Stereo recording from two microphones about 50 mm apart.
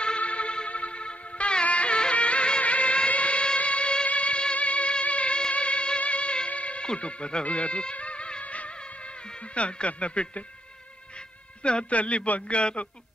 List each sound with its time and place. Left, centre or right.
0.0 s music: left
11.1 s speech: centre